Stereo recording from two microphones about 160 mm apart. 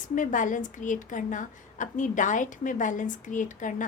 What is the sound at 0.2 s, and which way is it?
A woman's voice, 55° left (ahead or behind).